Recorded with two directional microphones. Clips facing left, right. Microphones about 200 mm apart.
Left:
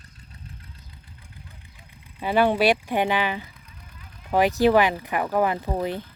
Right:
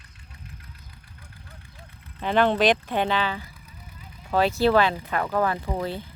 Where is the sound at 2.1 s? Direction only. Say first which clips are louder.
Left 1 dB; 10° left (ahead or behind).